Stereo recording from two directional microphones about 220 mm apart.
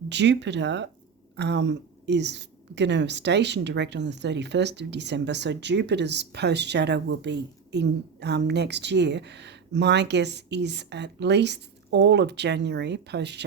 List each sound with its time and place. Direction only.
0.1 s a woman's voice: 50° right (ahead or behind)